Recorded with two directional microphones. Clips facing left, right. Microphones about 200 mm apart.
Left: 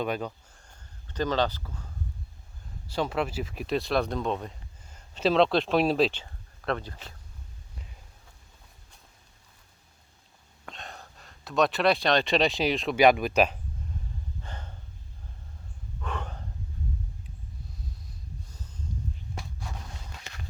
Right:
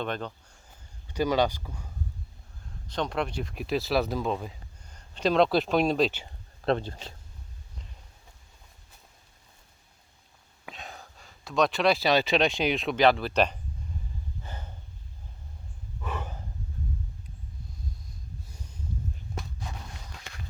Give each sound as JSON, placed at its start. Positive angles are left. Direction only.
{"t": 0.0, "sound": "speech", "side_deg": 10}
{"t": 2.6, "sound": "speech", "side_deg": 5}
{"t": 6.2, "sound": "speech", "side_deg": -30}
{"t": 10.7, "sound": "speech", "side_deg": 0}
{"t": 13.0, "sound": "speech", "side_deg": 15}
{"t": 14.4, "sound": "snort", "side_deg": -10}
{"t": 16.0, "sound": "snort", "side_deg": -5}
{"t": 18.5, "sound": "a sound", "side_deg": -10}